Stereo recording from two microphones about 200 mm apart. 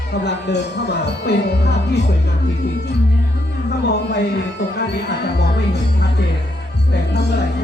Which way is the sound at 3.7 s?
55° left (ahead or behind).